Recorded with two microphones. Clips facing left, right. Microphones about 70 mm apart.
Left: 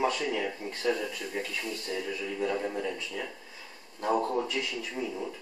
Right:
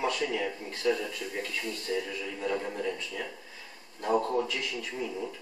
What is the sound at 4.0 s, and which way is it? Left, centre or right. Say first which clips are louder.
Speech: even; centre.